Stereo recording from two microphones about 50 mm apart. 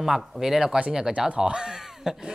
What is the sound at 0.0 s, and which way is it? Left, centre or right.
Speech, centre.